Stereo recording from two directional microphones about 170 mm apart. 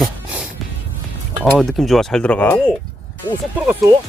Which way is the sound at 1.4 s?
Centre (ahead or behind).